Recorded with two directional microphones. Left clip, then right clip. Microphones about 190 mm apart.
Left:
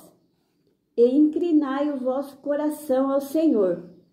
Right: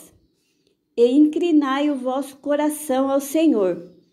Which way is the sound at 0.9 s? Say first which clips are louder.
Right 2 dB; 30° right (ahead or behind).